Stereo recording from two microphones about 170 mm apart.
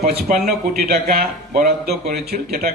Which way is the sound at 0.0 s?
65° right (ahead or behind).